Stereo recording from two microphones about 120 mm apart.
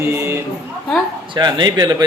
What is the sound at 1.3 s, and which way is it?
Speech, 35° right (ahead or behind).